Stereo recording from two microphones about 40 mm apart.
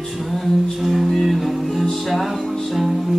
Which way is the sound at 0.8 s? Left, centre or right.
Centre.